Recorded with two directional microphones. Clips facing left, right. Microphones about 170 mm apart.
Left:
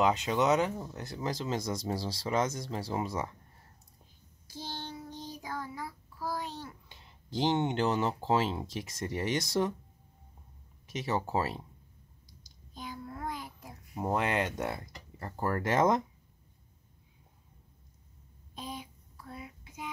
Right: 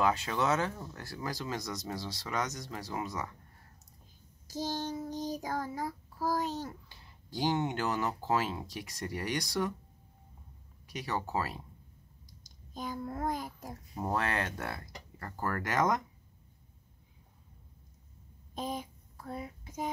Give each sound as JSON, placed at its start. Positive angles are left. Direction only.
{"t": 0.0, "sound": "speech", "side_deg": 20}
{"t": 4.5, "sound": "child singing", "side_deg": -45}
{"t": 6.9, "sound": "speech", "side_deg": 20}
{"t": 10.9, "sound": "speech", "side_deg": 25}
{"t": 12.4, "sound": "child singing", "side_deg": -45}
{"t": 13.9, "sound": "speech", "side_deg": 20}
{"t": 18.5, "sound": "a sound", "side_deg": -45}